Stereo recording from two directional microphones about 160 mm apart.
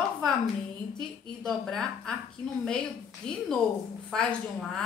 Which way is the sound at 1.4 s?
Centre (ahead or behind).